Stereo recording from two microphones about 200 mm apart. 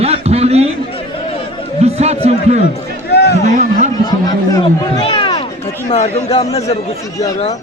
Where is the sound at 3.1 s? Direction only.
55° left (ahead or behind).